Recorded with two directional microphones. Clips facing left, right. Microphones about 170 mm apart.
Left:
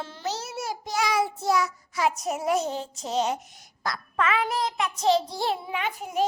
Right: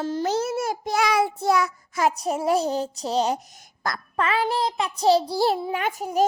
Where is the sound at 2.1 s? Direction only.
30° right (ahead or behind).